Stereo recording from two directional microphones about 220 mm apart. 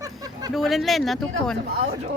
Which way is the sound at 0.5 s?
Centre (ahead or behind).